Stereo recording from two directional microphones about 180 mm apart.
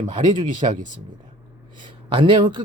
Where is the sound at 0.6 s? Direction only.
35° right (ahead or behind).